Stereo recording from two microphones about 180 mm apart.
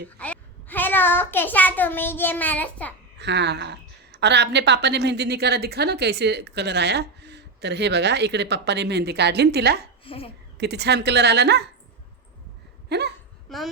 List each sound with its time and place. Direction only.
0.2 s a child's voice: 10° left (ahead or behind)
3.2 s a woman's voice: 75° right (ahead or behind)
10.0 s a child's voice: 30° left (ahead or behind)
10.6 s a woman's voice: 65° right (ahead or behind)
12.9 s a woman's voice: 65° right (ahead or behind)
13.5 s speech: centre (ahead or behind)